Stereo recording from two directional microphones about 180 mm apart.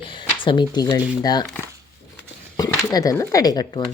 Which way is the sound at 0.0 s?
25° left (ahead or behind).